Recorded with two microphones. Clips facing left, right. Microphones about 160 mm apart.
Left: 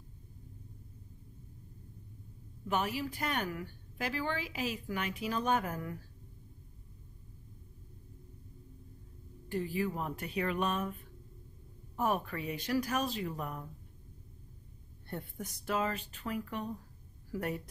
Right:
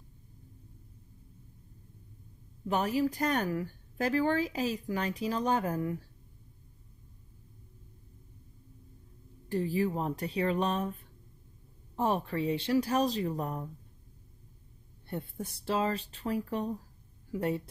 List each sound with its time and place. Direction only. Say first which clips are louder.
2.7 s speech: right 5 dB; 40° right (ahead or behind)
9.5 s speech: right 4 dB; 35° right (ahead or behind)
12.0 s speech: right 3 dB; 30° right (ahead or behind)
15.0 s speech: right 4 dB; 25° right (ahead or behind)